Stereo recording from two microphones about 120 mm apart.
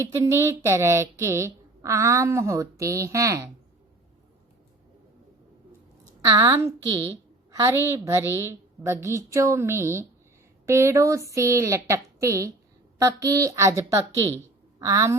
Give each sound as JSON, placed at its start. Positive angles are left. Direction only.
{"t": 0.0, "sound": "speech", "side_deg": -25}
{"t": 6.3, "sound": "speech", "side_deg": -25}